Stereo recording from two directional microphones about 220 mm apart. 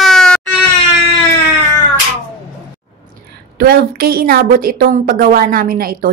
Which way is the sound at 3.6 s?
45° right (ahead or behind).